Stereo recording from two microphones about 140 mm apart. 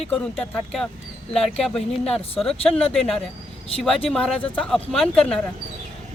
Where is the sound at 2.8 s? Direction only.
45° left (ahead or behind).